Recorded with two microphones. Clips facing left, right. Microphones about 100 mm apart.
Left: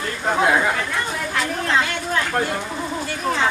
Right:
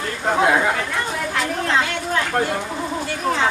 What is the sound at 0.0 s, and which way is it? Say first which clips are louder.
Chatter: right 1 dB; 40° right (ahead or behind).